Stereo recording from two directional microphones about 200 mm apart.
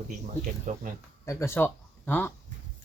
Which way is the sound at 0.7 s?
40° right (ahead or behind).